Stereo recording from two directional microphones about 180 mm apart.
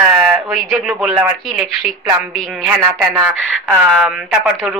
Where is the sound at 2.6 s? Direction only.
15° right (ahead or behind).